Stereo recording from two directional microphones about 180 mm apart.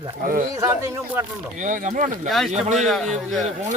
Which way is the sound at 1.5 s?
45° right (ahead or behind).